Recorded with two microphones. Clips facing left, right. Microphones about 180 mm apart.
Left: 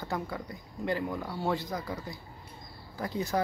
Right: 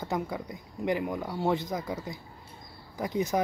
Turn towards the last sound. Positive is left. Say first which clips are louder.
# right 3 dB
turn(degrees=-20)  # may be behind; listen again after turning